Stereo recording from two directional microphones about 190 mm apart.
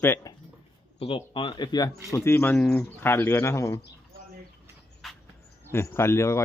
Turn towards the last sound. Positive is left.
turn(degrees=15)  # may be behind; listen again after turning